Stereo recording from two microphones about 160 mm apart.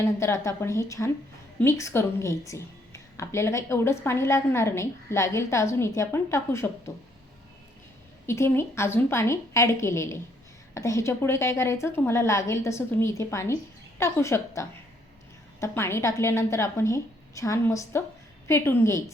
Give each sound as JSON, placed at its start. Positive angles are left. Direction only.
{"t": 0.0, "sound": "a woman's voice", "side_deg": 15}
{"t": 8.3, "sound": "a woman's voice", "side_deg": 15}